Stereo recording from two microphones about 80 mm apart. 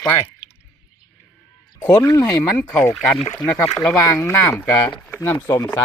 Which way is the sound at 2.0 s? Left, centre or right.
Left.